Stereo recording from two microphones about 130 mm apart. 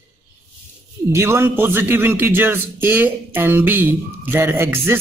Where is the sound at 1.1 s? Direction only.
20° right (ahead or behind).